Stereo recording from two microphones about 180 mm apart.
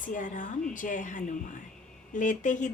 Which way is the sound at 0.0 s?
45° left (ahead or behind).